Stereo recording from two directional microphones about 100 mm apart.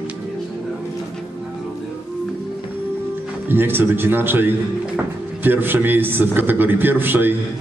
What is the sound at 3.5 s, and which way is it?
Speech, 20° right (ahead or behind).